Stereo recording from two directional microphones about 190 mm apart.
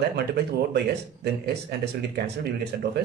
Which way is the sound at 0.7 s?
60° right (ahead or behind).